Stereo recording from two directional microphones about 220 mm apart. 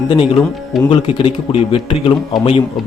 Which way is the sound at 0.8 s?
25° left (ahead or behind).